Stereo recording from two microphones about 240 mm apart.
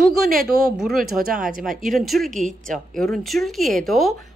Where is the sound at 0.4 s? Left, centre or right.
Centre.